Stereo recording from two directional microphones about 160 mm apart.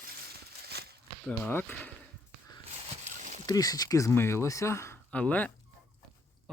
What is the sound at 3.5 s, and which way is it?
Speech, 25° left (ahead or behind).